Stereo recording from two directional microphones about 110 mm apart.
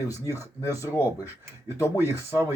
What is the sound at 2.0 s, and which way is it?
Speech, 20° right (ahead or behind).